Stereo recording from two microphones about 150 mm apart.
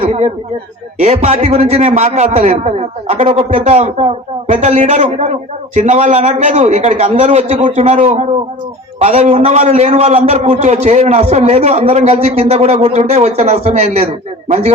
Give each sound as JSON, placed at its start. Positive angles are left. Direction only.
{"t": 0.0, "sound": "a man's voice", "side_deg": -45}